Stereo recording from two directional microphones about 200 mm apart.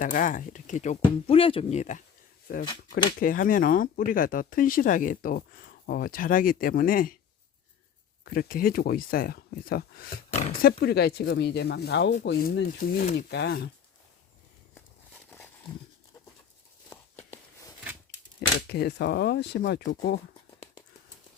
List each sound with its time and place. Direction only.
0.0 s speech: 40° left (ahead or behind)
2.5 s speech: 45° left (ahead or behind)
8.2 s speech: 45° left (ahead or behind)
16.9 s a sound: 10° left (ahead or behind)
18.7 s speech: 55° left (ahead or behind)